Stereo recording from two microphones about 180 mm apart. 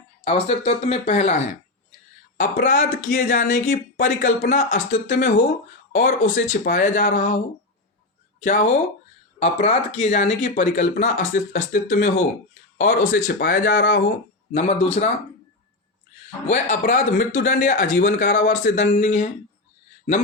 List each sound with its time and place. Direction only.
0.3 s speech: 35° left (ahead or behind)
2.4 s speech: 45° left (ahead or behind)
8.4 s speech: 45° left (ahead or behind); by 14.0 s 60° left (ahead or behind)
14.5 s speech: 40° left (ahead or behind)
16.5 s speech: 45° left (ahead or behind)